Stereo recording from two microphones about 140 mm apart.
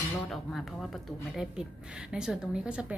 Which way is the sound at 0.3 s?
Centre (ahead or behind).